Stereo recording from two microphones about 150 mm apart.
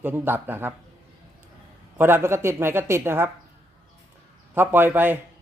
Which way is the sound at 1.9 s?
15° right (ahead or behind).